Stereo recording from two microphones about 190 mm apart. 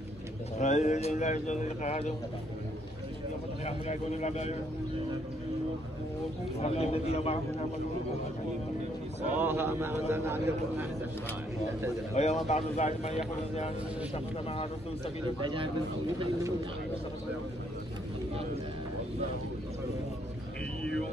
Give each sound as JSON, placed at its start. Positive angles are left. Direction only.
{"t": 0.6, "sound": "speech", "side_deg": 40}
{"t": 3.6, "sound": "speech", "side_deg": 35}
{"t": 6.6, "sound": "speech", "side_deg": 35}
{"t": 9.4, "sound": "a man's voice", "side_deg": -10}
{"t": 12.1, "sound": "speech", "side_deg": 35}
{"t": 15.4, "sound": "speech", "side_deg": -25}